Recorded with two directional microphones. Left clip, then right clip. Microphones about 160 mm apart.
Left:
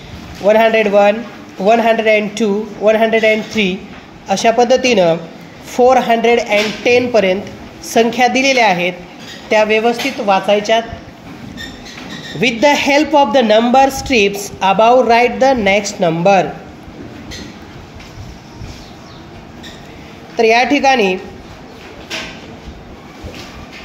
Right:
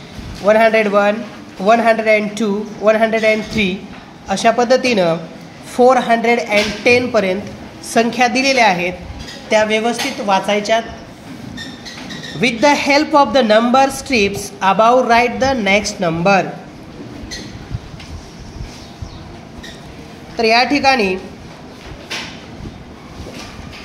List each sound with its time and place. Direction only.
0.5 s a man's voice: 15° left (ahead or behind)
12.4 s a man's voice: 20° left (ahead or behind)
20.3 s a man's voice: 20° left (ahead or behind)